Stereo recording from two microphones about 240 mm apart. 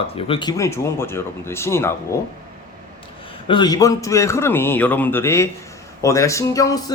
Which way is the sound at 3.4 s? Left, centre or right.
Centre.